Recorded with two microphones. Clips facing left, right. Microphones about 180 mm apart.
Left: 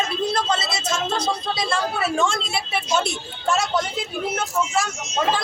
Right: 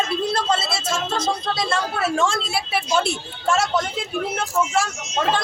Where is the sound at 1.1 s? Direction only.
25° right (ahead or behind).